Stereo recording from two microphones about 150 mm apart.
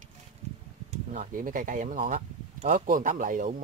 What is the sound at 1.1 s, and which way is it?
Speech, 60° right (ahead or behind).